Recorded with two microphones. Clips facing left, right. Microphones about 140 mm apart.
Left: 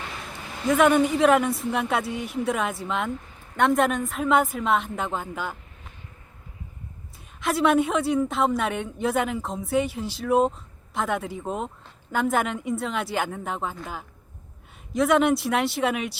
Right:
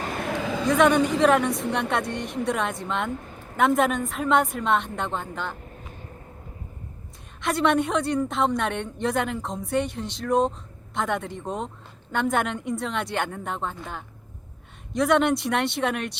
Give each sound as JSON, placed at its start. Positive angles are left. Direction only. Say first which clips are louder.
{"t": 0.0, "sound": "a sound", "louder": "right 7 dB", "side_deg": -50}
{"t": 0.7, "sound": "a woman's voice", "louder": "left 1 dB", "side_deg": 0}
{"t": 7.4, "sound": "a woman's voice", "louder": "left 1 dB", "side_deg": 0}